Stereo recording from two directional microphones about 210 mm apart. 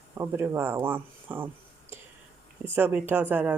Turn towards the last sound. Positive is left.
turn(degrees=-10)  # may be behind; listen again after turning